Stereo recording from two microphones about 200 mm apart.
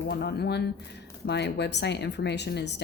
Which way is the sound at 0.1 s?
55° left (ahead or behind).